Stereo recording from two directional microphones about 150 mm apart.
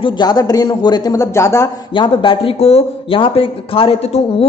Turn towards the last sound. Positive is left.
turn(degrees=40)  # may be behind; listen again after turning